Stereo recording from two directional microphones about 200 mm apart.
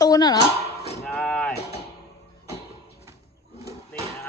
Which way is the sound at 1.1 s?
5° left (ahead or behind).